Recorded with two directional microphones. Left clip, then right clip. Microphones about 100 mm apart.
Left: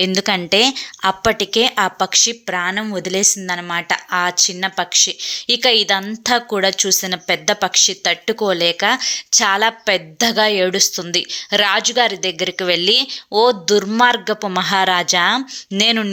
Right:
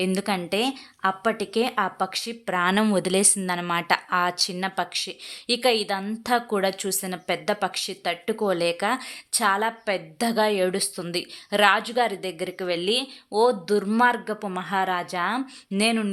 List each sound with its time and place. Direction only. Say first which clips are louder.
0.0 s a woman's voice: left 9 dB; 15° left (ahead or behind)
1.4 s a woman's voice: left 9 dB; 10° left (ahead or behind)
2.7 s speech: even; 25° right (ahead or behind)
3.1 s a woman's voice: left 6 dB; 5° right (ahead or behind)
9.3 s a woman's voice: left 7 dB; 15° left (ahead or behind)